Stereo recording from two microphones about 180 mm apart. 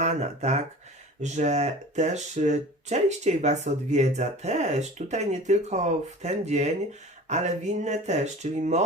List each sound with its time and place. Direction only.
0.0 s speech: 40° right (ahead or behind)